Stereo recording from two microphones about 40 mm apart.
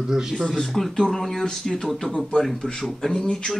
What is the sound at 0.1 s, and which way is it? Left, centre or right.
Speech, centre.